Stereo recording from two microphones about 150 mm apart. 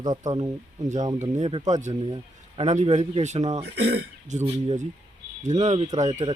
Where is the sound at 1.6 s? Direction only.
50° right (ahead or behind).